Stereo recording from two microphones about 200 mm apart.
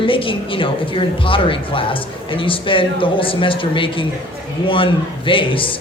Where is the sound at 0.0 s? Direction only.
25° left (ahead or behind).